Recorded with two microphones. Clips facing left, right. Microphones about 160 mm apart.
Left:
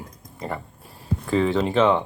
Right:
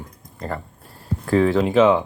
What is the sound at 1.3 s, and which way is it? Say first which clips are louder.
Speech: right 4 dB; centre (ahead or behind).